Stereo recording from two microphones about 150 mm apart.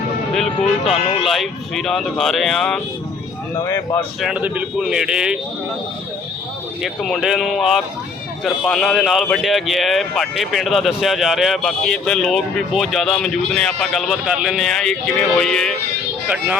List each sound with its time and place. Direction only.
0.3 s music: centre (ahead or behind)
0.9 s speech: 45° left (ahead or behind)
1.2 s speech: centre (ahead or behind)
3.5 s speech: 20° left (ahead or behind)
4.2 s speech: 5° right (ahead or behind)
6.8 s speech: centre (ahead or behind)
16.2 s speech: 10° right (ahead or behind)